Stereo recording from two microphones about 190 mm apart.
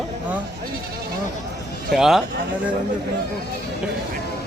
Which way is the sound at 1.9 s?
Centre (ahead or behind).